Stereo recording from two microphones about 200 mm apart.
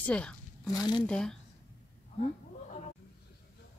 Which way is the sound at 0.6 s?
20° left (ahead or behind).